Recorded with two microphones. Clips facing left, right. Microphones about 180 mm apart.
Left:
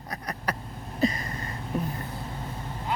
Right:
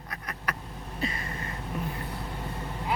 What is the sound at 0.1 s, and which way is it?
Vehicle, 35° left (ahead or behind).